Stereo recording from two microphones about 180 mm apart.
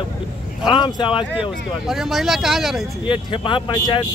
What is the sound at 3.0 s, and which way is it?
Speech, 30° left (ahead or behind).